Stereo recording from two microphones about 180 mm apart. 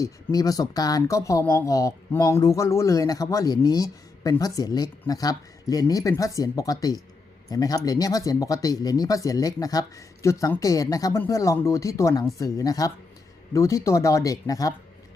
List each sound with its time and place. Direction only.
0.0 s speech: 20° left (ahead or behind)